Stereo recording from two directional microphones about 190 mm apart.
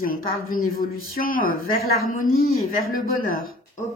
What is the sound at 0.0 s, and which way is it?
Speech, 50° left (ahead or behind).